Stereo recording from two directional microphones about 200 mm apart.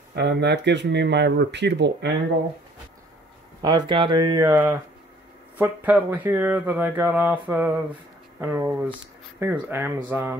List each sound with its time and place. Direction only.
0.1 s speech: 60° right (ahead or behind)
3.6 s speech: 20° right (ahead or behind)